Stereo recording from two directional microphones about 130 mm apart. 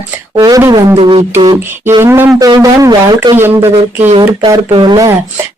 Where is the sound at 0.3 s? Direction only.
30° right (ahead or behind).